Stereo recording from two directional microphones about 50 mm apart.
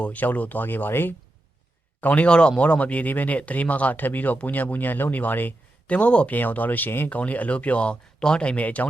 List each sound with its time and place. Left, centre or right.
0.0 s speech: left
2.0 s speech: left
2.2 s speech: centre
6.3 s speech: left
7.1 s speech: left